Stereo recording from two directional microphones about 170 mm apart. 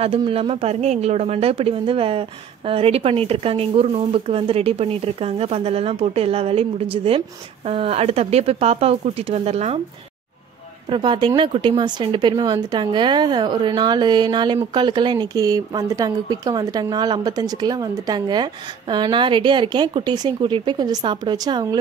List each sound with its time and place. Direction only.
0.0 s speech: 35° right (ahead or behind)
10.9 s speech: 30° right (ahead or behind)